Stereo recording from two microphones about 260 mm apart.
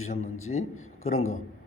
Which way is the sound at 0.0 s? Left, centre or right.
Left.